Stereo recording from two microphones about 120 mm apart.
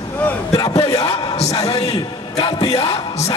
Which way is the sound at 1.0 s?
55° left (ahead or behind).